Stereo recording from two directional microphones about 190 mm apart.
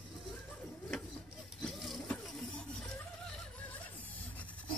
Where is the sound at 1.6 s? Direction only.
Centre (ahead or behind).